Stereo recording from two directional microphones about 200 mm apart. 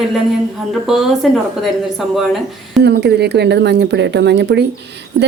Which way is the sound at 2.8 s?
55° right (ahead or behind).